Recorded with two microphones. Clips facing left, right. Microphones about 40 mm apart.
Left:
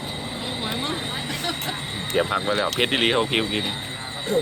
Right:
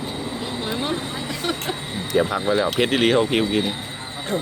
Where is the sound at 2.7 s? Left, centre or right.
Centre.